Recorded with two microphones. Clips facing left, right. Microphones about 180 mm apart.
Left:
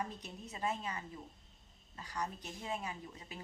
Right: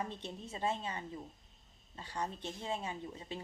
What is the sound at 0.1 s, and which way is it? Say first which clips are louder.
A woman's voice: right 4 dB; 30° right (ahead or behind).